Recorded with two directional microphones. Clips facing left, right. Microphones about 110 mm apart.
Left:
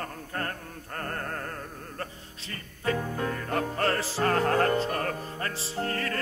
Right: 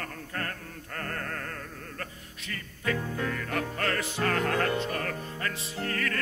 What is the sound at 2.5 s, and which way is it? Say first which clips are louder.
Music: left 2 dB; 30° left (ahead or behind).